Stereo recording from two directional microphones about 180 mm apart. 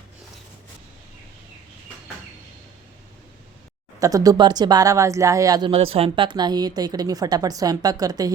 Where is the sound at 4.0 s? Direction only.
20° right (ahead or behind).